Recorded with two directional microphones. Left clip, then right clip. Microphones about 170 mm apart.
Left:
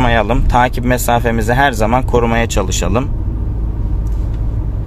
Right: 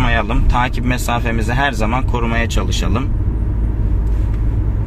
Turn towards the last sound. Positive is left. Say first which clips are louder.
# left 5 dB
turn(degrees=45)  # may be behind; listen again after turning